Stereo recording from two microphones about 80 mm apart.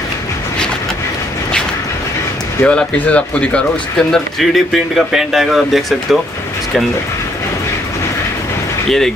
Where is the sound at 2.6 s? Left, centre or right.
Centre.